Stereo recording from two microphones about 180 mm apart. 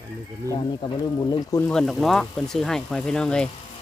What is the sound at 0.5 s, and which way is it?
Speech, 20° left (ahead or behind).